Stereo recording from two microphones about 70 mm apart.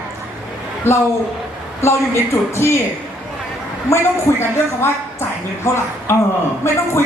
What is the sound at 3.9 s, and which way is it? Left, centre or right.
Speech, left.